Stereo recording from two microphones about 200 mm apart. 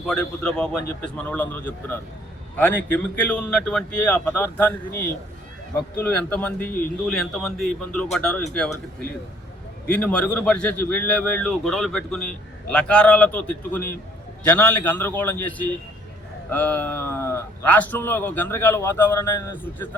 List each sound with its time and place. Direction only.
0.0 s a man's voice: 5° left (ahead or behind)
9.8 s a man's voice: 5° left (ahead or behind)